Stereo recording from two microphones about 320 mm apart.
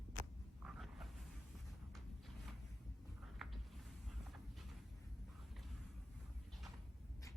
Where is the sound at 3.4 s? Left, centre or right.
Centre.